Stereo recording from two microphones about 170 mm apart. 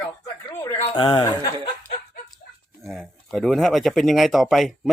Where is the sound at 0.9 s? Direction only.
30° left (ahead or behind).